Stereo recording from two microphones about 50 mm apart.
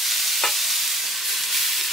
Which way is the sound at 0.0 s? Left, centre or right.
Centre.